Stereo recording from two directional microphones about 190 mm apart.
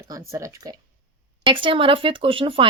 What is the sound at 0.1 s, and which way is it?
Speech, 15° right (ahead or behind).